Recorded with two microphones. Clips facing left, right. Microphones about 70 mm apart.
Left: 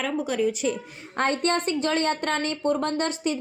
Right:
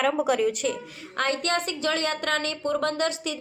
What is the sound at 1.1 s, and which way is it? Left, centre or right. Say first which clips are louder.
Speech: left 2 dB; left.